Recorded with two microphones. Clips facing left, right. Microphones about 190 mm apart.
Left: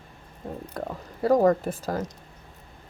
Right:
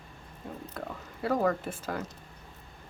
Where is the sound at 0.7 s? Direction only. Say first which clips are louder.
Left 8 dB; 40° left (ahead or behind).